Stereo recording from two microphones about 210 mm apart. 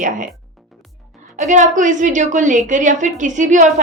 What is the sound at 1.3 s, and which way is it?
A woman's voice, 35° right (ahead or behind).